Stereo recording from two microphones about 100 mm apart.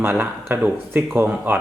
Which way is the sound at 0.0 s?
20° right (ahead or behind).